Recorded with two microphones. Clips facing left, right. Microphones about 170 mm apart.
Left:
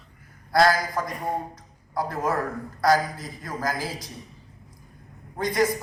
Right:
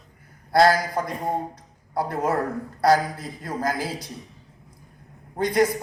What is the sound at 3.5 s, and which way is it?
Speech, 30° right (ahead or behind).